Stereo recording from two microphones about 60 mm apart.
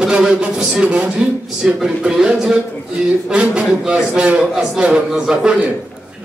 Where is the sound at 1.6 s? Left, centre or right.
Centre.